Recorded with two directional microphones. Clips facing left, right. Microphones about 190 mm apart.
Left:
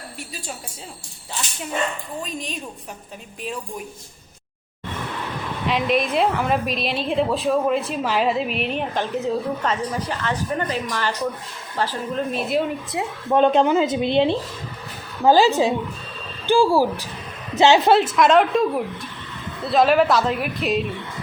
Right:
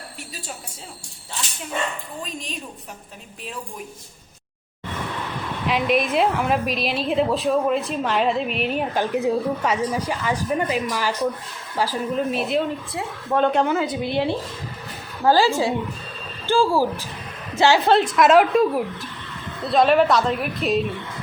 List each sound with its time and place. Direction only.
5.6 s a woman's voice: centre (ahead or behind)
12.9 s a woman's voice: 20° left (ahead or behind)
17.9 s a woman's voice: 5° left (ahead or behind)